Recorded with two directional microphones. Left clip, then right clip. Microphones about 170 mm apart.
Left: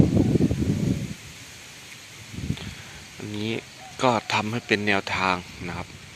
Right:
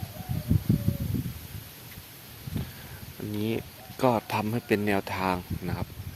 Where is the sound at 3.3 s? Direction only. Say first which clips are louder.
Left 1 dB; 15° right (ahead or behind).